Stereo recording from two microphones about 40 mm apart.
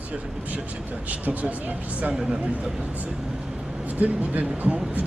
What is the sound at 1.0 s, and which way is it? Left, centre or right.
Speech, right.